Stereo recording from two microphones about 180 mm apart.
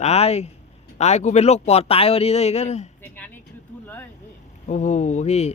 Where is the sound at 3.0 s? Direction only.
10° left (ahead or behind).